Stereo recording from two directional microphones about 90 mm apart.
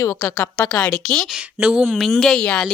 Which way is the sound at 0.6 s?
10° left (ahead or behind).